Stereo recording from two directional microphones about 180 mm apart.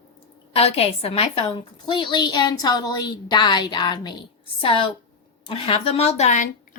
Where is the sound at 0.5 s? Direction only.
35° left (ahead or behind).